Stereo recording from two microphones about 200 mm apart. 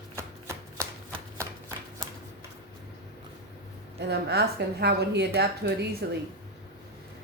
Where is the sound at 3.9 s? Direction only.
55° right (ahead or behind).